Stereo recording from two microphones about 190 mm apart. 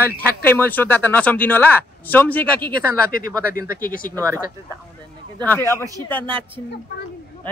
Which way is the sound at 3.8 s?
45° left (ahead or behind).